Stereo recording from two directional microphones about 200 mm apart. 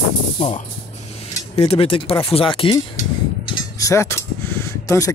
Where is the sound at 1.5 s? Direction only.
30° left (ahead or behind).